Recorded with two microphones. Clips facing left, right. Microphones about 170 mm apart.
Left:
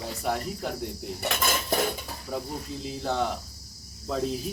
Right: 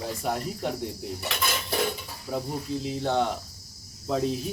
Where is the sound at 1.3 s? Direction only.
45° left (ahead or behind).